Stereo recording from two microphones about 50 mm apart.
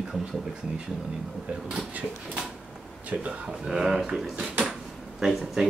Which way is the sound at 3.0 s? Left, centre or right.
Right.